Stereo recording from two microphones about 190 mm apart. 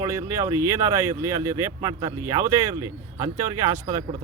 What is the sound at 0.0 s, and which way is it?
Speech, 15° right (ahead or behind).